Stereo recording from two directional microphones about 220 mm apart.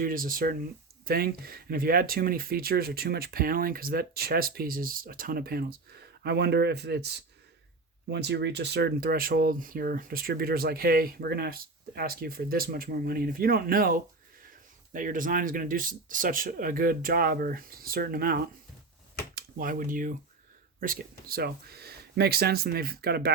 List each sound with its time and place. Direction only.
0.0 s speech: 40° right (ahead or behind)